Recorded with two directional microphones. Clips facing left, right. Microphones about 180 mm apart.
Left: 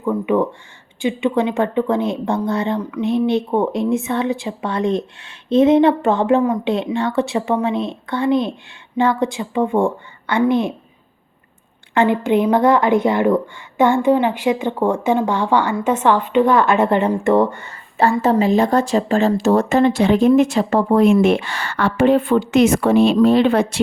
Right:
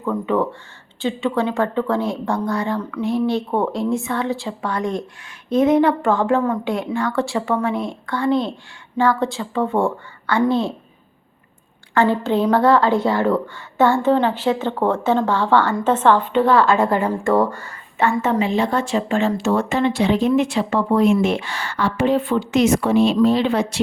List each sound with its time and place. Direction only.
0.0 s a woman's voice: 15° left (ahead or behind)
11.9 s a woman's voice: 15° left (ahead or behind)
18.2 s speech: 35° left (ahead or behind); by 23.8 s 55° left (ahead or behind)